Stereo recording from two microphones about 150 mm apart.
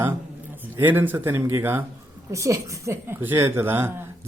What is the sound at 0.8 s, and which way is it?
A woman's voice, 15° right (ahead or behind).